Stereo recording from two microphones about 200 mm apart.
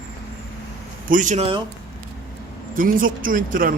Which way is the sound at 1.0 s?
40° right (ahead or behind).